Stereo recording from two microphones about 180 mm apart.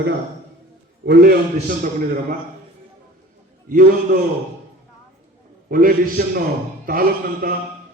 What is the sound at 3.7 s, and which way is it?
Speech, 50° right (ahead or behind).